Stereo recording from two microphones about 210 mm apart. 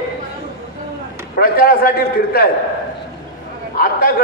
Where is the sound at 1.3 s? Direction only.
45° left (ahead or behind).